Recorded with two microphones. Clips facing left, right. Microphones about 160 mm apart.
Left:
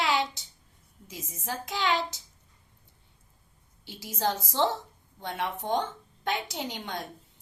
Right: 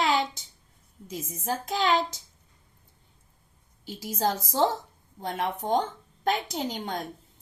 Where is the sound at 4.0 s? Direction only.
40° right (ahead or behind).